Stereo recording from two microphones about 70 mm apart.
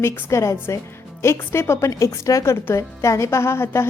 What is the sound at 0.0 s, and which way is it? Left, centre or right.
A woman's voice, left.